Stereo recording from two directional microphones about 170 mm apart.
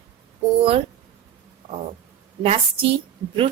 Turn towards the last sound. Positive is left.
turn(degrees=-30)  # may be behind; listen again after turning